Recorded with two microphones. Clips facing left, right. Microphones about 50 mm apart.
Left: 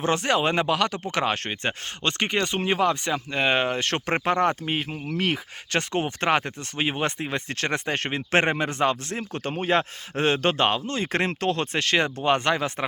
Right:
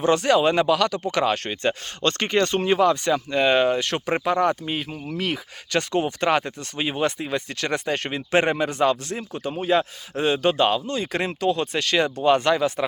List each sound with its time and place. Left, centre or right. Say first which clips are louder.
0.0 s speech: right 4 dB; left
3.8 s speech: right 1 dB; left
9.3 s a man's voice: right 2 dB; left
11.7 s speech: right 1 dB; left